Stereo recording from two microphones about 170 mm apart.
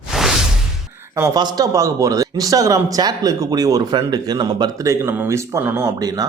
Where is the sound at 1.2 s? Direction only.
20° right (ahead or behind).